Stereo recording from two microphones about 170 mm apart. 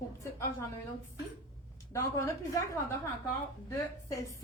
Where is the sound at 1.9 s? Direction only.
15° left (ahead or behind).